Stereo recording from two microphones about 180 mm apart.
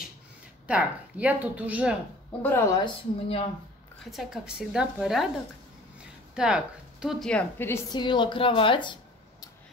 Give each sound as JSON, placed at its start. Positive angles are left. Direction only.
{"t": 0.7, "sound": "a woman's voice", "side_deg": -5}
{"t": 2.4, "sound": "speech", "side_deg": 15}
{"t": 2.8, "sound": "a woman's voice", "side_deg": 30}
{"t": 4.0, "sound": "a woman's voice", "side_deg": 0}
{"t": 6.3, "sound": "a woman's voice", "side_deg": -5}
{"t": 8.0, "sound": "speech", "side_deg": 25}